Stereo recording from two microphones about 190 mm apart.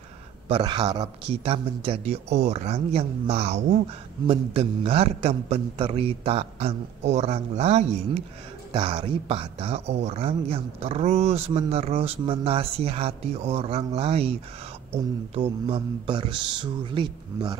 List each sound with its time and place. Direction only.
0.5 s speech: 25° right (ahead or behind)
1.4 s speech: 30° right (ahead or behind)